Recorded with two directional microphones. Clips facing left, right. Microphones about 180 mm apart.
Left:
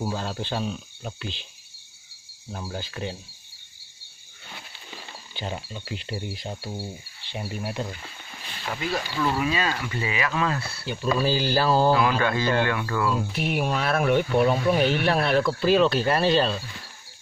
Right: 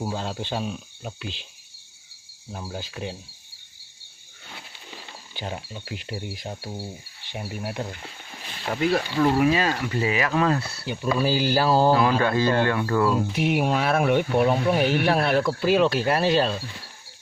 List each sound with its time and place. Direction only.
0.0 s speech: 15° right (ahead or behind)
2.5 s speech: 10° right (ahead or behind)
5.3 s speech: 10° right (ahead or behind)
8.6 s speech: 55° right (ahead or behind); by 10.9 s 35° right (ahead or behind)
10.9 s speech: 15° right (ahead or behind)
12.2 s speech: 30° right (ahead or behind)
13.3 s speech: 15° right (ahead or behind)